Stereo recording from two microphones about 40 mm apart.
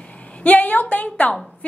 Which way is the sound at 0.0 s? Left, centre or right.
Left.